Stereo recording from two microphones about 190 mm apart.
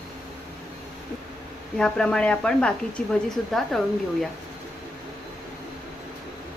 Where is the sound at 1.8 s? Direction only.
5° left (ahead or behind).